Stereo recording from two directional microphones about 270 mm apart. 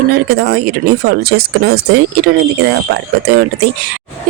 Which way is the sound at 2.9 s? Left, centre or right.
Right.